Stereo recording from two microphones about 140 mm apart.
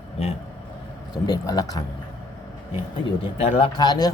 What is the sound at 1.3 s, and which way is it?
Speech, 25° left (ahead or behind).